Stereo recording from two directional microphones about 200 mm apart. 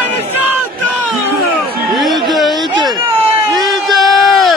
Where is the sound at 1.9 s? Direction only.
Centre (ahead or behind).